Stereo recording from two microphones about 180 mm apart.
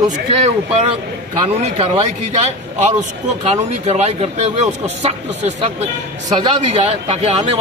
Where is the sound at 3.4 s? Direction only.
35° right (ahead or behind).